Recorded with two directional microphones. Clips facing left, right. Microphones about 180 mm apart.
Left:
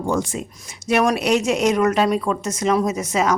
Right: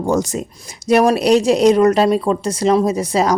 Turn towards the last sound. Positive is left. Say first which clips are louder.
# right 4 dB
turn(degrees=-35)  # may be behind; listen again after turning